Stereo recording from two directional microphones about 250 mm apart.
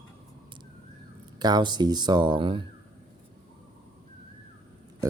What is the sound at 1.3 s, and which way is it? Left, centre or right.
Speech, centre.